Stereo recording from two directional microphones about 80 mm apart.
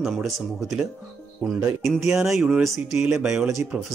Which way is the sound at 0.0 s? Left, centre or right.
Centre.